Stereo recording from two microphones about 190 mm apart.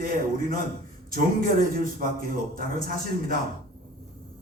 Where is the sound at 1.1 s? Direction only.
50° right (ahead or behind).